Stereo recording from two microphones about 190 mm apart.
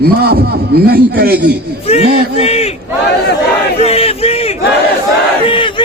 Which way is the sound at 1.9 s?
30° left (ahead or behind).